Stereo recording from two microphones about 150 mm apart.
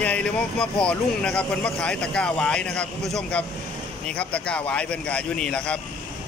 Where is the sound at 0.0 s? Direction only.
10° left (ahead or behind).